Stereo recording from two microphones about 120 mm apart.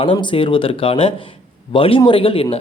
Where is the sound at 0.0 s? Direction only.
45° left (ahead or behind).